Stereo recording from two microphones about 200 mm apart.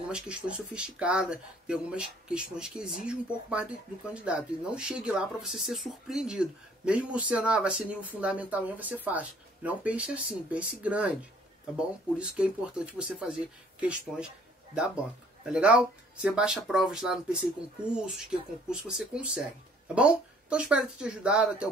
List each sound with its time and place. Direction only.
0.1 s speech: 5° right (ahead or behind)
15.4 s speech: 5° right (ahead or behind)